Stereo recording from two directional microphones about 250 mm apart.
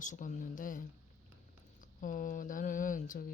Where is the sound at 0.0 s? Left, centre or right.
Left.